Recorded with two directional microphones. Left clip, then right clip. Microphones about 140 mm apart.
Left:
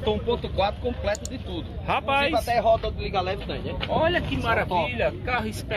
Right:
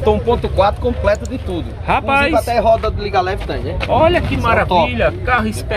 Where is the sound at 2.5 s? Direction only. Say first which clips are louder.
Right 8 dB; 50° right (ahead or behind).